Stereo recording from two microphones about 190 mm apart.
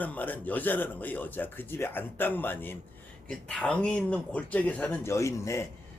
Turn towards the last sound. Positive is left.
turn(degrees=15)  # may be behind; listen again after turning